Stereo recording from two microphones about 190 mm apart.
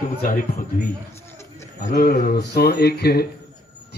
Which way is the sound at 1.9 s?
50° left (ahead or behind).